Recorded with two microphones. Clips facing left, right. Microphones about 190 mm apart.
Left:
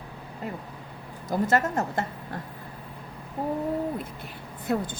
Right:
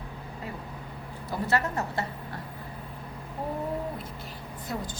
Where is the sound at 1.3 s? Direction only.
45° left (ahead or behind).